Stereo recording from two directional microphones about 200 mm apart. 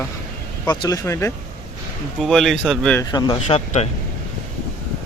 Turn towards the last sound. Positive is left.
turn(degrees=35)  # may be behind; listen again after turning